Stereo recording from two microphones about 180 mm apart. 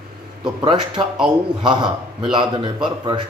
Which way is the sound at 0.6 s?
25° right (ahead or behind).